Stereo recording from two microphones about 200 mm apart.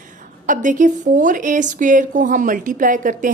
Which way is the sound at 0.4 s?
40° right (ahead or behind).